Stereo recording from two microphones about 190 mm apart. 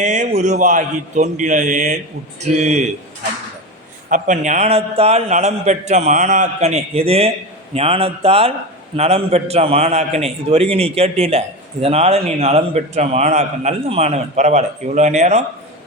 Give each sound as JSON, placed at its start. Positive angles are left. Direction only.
{"t": 0.0, "sound": "a man's voice", "side_deg": -40}
{"t": 4.1, "sound": "a man's voice", "side_deg": -40}